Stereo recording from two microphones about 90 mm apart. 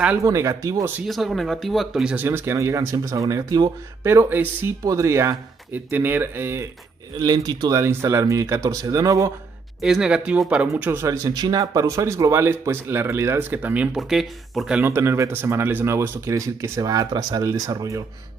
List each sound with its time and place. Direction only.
0.2 s speech: 35° right (ahead or behind)
1.0 s speech: centre (ahead or behind)
2.2 s speech: 25° right (ahead or behind); by 3.7 s 45° right (ahead or behind)
4.0 s speech: 30° right (ahead or behind)
4.8 s speech: 35° right (ahead or behind)
5.7 s speech: 20° right (ahead or behind)
7.2 s speech: 45° right (ahead or behind)
7.8 s speech: 30° right (ahead or behind)
9.8 s speech: 5° right (ahead or behind)
10.8 s speech: 25° right (ahead or behind)
11.2 s speech: 45° right (ahead or behind); by 13.8 s 20° right (ahead or behind)
13.9 s speech: centre (ahead or behind)
14.8 s speech: 30° right (ahead or behind)